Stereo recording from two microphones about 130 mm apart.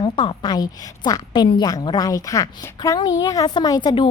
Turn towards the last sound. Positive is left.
turn(degrees=30)  # may be behind; listen again after turning